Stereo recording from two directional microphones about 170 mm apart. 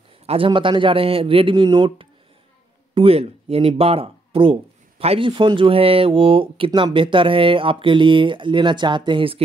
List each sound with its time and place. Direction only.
0.3 s speech: 30° right (ahead or behind)